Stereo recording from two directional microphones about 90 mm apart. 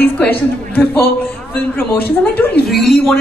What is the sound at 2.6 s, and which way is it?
Speech, centre (ahead or behind).